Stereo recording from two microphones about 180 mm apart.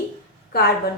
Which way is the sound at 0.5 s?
55° left (ahead or behind).